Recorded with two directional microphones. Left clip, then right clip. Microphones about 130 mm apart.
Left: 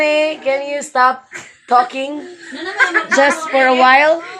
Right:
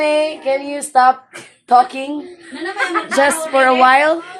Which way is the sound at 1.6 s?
15° right (ahead or behind).